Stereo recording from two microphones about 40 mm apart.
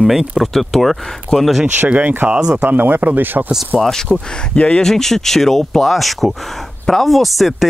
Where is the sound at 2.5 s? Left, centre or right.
Right.